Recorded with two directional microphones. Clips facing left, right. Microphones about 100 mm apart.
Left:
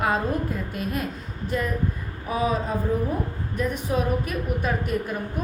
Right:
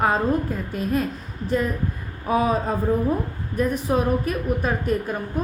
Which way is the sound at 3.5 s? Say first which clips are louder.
Right 4 dB; 40° right (ahead or behind).